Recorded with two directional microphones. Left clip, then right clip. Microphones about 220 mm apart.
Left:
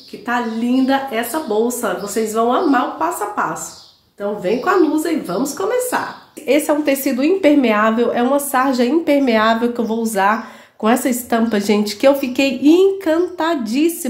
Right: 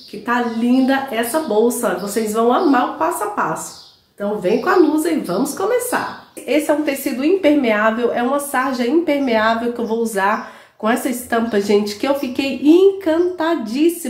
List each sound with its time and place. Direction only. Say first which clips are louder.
0.3 s speech: right 1 dB; 5° left (ahead or behind)
6.4 s a woman's voice: left 2 dB; 35° left (ahead or behind)